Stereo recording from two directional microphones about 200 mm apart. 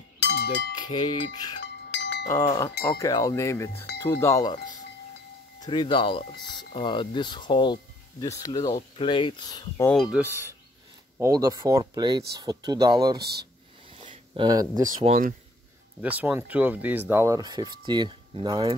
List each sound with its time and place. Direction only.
0.2 s music: 60° left (ahead or behind)
0.7 s speech: 20° left (ahead or behind)
1.6 s chink: 60° left (ahead or behind)
2.8 s chink: 15° left (ahead or behind)
5.6 s speech: 20° left (ahead or behind)
9.8 s speech: centre (ahead or behind); by 13.3 s 20° right (ahead or behind)
13.8 s a sound: 25° right (ahead or behind)
15.0 s speech: 40° right (ahead or behind)
16.0 s speech: 10° right (ahead or behind)